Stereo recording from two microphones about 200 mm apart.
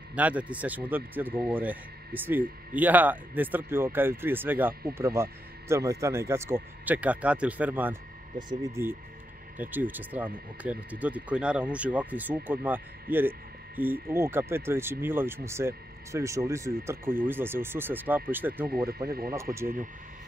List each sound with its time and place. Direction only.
0.1 s speech: 5° right (ahead or behind)
8.4 s speech: 20° right (ahead or behind)
9.6 s speech: 10° right (ahead or behind)
19.0 s speech: 50° right (ahead or behind)
19.5 s speech: 15° right (ahead or behind)